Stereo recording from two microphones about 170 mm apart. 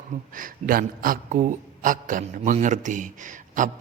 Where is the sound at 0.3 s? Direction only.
55° right (ahead or behind).